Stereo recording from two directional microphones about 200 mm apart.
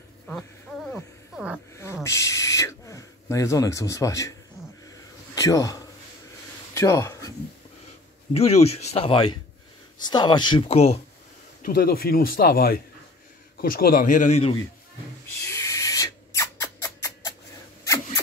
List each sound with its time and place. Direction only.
0.3 s a sound: 5° left (ahead or behind)
2.0 s speech: 15° left (ahead or behind)
5.3 s speech: 15° left (ahead or behind)
6.7 s a sound: 15° left (ahead or behind)
8.3 s speech: 30° left (ahead or behind)
11.6 s speech: 50° left (ahead or behind)
15.4 s rodents: 15° left (ahead or behind)